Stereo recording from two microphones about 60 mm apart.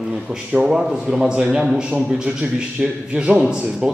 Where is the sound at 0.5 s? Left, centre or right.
Centre.